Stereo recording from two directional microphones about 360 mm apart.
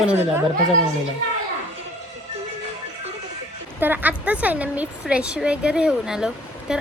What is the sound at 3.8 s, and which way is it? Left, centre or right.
A woman's voice, centre.